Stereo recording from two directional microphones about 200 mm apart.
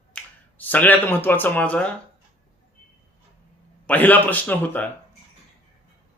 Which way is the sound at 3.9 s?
10° left (ahead or behind).